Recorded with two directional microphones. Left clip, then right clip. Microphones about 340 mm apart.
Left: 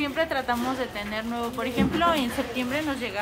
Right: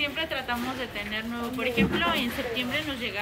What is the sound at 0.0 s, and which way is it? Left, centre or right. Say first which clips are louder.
A woman's voice: left 3 dB; centre.